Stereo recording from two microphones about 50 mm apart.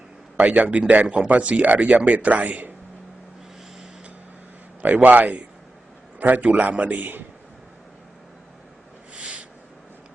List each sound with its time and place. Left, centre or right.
0.3 s a man's voice: right
4.8 s a man's voice: right
9.1 s a sound: right